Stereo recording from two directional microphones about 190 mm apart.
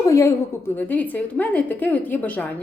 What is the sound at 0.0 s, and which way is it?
A woman's voice, 15° left (ahead or behind).